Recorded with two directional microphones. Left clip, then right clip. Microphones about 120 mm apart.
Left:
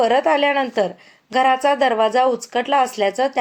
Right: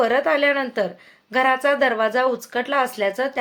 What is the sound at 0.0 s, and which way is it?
Speech, 20° left (ahead or behind).